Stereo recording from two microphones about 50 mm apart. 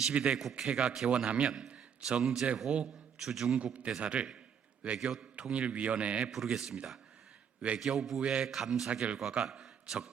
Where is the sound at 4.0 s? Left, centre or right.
Right.